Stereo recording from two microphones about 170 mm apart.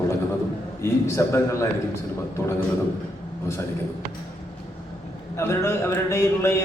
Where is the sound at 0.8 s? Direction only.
15° left (ahead or behind).